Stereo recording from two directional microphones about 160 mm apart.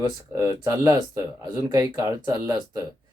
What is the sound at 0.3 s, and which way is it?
Speech, 20° right (ahead or behind).